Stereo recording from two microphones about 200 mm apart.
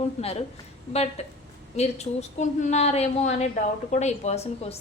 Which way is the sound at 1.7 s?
35° left (ahead or behind).